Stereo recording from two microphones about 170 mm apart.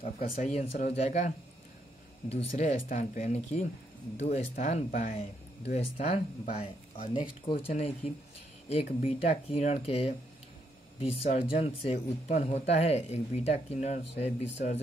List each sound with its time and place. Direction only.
0.4 s speech: 40° left (ahead or behind)
11.2 s speech: 35° left (ahead or behind)